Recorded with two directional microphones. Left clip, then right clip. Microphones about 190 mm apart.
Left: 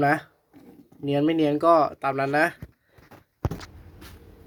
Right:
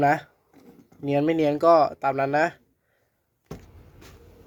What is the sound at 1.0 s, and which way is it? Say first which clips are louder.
Speech: even; 20° right (ahead or behind).